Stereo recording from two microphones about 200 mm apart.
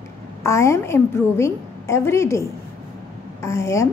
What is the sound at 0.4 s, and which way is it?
A woman's voice, 15° left (ahead or behind).